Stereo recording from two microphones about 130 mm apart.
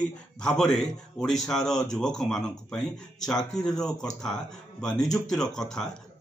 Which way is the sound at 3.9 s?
30° left (ahead or behind).